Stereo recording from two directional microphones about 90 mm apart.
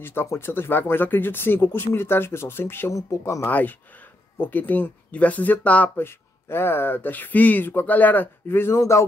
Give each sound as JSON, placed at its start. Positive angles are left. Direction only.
{"t": 0.0, "sound": "speech", "side_deg": 25}
{"t": 2.9, "sound": "speech", "side_deg": 35}
{"t": 3.4, "sound": "speech", "side_deg": 20}